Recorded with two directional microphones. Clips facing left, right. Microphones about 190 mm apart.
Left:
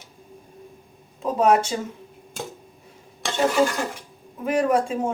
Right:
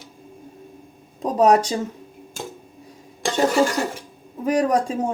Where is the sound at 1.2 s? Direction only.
40° right (ahead or behind).